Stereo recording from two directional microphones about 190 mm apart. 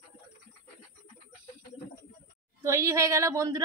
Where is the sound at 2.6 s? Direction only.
15° right (ahead or behind).